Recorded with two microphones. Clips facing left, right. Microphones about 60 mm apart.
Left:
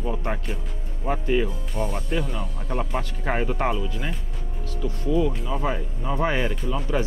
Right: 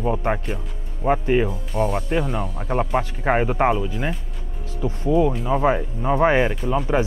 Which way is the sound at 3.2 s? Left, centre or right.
Right.